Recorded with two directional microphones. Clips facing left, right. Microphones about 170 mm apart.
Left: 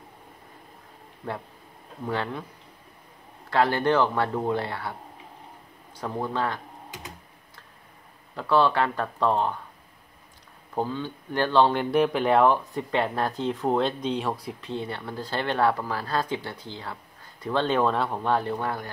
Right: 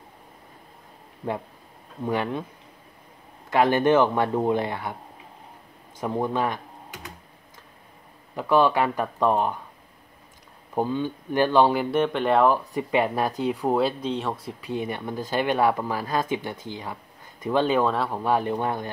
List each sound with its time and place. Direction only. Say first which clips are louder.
2.0 s speech: right 3 dB; 15° right (ahead or behind)
3.4 s speech: right 3 dB; 15° right (ahead or behind)
5.9 s speech: right 3 dB; 20° right (ahead or behind)
8.4 s speech: right 2 dB; 15° right (ahead or behind)
10.7 s speech: right 4 dB; 15° right (ahead or behind); by 12.5 s centre (ahead or behind)
12.7 s speech: right 3 dB; 10° right (ahead or behind)
14.7 s speech: right 4 dB; 15° right (ahead or behind)
18.3 s speech: right 4 dB; 15° right (ahead or behind)